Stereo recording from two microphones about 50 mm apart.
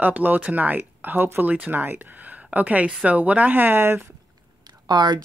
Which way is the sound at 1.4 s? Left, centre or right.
Right.